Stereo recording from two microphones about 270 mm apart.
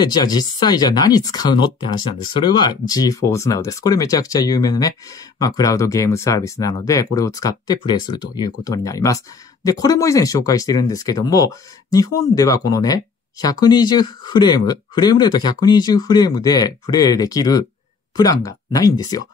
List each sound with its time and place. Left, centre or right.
0.0 s speech: centre